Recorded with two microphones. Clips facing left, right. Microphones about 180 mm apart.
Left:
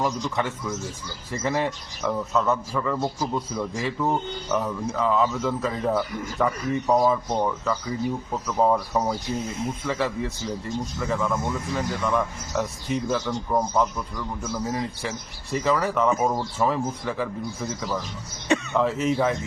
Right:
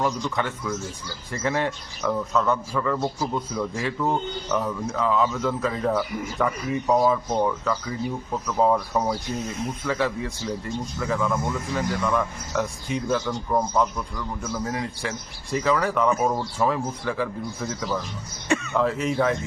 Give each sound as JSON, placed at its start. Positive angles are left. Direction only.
{"t": 0.0, "sound": "speech", "side_deg": 5}
{"t": 9.4, "sound": "speech", "side_deg": 25}
{"t": 9.6, "sound": "speech", "side_deg": 0}
{"t": 18.4, "sound": "throat clearing", "side_deg": 20}
{"t": 18.7, "sound": "speech", "side_deg": 0}